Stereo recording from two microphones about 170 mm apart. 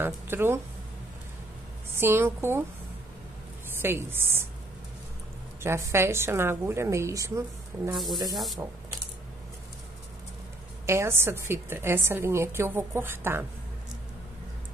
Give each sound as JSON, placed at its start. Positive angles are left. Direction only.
{"t": 0.0, "sound": "a woman's voice", "side_deg": -15}
{"t": 2.0, "sound": "a woman's voice", "side_deg": -15}
{"t": 3.8, "sound": "a woman's voice", "side_deg": -15}
{"t": 5.6, "sound": "a woman's voice", "side_deg": -15}
{"t": 10.9, "sound": "a woman's voice", "side_deg": -15}